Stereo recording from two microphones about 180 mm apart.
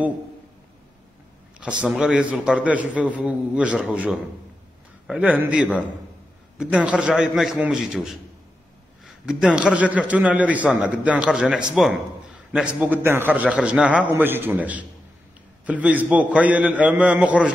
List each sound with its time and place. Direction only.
1.6 s a man's voice: 5° right (ahead or behind)